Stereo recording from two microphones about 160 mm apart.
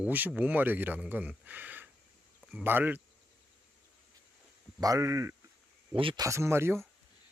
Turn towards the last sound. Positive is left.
turn(degrees=-15)  # may be behind; listen again after turning